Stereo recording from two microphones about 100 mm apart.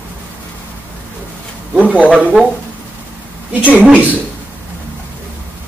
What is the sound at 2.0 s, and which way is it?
Speech, 10° right (ahead or behind).